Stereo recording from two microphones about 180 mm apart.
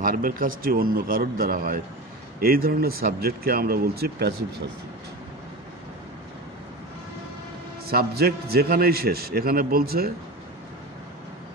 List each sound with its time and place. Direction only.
0.0 s a man's voice: 50° right (ahead or behind)
7.9 s a man's voice: 60° right (ahead or behind)